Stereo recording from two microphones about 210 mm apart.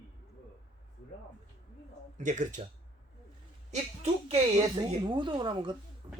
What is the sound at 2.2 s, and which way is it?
Speech, 35° right (ahead or behind).